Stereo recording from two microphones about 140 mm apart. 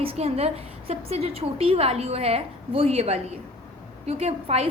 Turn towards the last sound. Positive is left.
turn(degrees=-45)  # may be behind; listen again after turning